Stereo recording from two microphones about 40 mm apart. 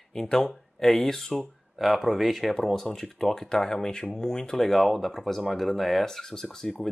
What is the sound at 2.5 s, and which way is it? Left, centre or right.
Speech, centre.